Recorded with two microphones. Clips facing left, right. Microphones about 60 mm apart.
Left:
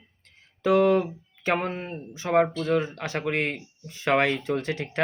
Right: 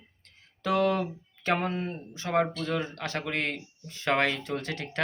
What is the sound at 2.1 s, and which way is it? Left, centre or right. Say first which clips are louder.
Speech: left 5 dB; centre.